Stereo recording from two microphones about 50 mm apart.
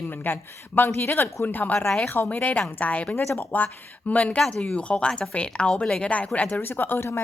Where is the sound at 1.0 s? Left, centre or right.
Left.